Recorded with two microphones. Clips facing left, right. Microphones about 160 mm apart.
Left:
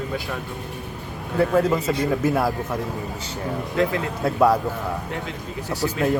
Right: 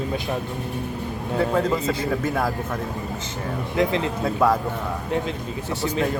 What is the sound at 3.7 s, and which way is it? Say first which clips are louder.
Speech: right 1 dB; 20° right (ahead or behind).